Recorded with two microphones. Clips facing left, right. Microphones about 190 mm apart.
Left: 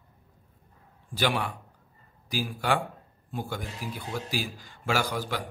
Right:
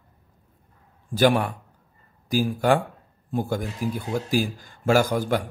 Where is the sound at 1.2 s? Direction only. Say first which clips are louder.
Right 8 dB; 45° right (ahead or behind).